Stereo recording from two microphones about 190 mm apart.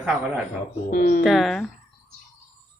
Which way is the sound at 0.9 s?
50° left (ahead or behind).